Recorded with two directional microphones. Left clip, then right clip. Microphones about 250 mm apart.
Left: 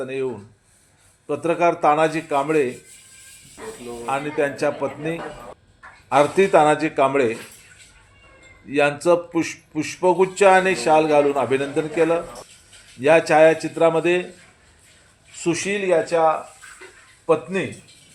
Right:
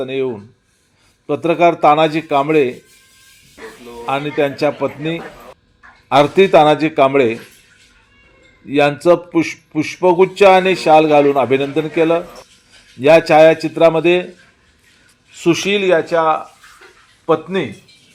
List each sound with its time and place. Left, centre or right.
0.0 s a man's voice: centre
4.0 s a man's voice: right
6.1 s a man's voice: right
8.7 s a man's voice: centre
15.6 s a man's voice: right